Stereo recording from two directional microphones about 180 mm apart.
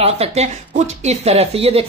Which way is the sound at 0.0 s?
35° right (ahead or behind).